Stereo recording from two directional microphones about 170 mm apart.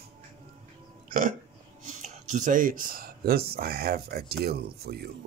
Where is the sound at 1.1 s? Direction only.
55° right (ahead or behind).